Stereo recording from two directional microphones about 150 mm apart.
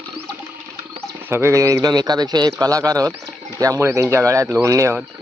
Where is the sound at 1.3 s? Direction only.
15° right (ahead or behind).